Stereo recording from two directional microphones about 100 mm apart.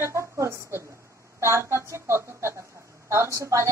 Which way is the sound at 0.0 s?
30° right (ahead or behind).